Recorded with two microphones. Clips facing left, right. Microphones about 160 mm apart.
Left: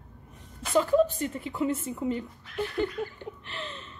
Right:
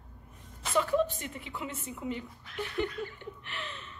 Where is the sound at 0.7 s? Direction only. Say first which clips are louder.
Left 5 dB; 35° left (ahead or behind).